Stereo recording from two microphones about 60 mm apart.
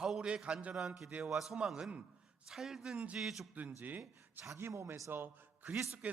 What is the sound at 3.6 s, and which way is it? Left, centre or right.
Speech, right.